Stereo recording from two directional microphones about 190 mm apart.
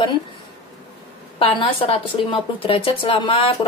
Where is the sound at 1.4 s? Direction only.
30° left (ahead or behind).